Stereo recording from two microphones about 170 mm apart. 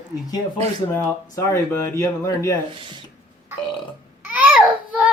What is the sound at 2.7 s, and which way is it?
Speech, 30° right (ahead or behind).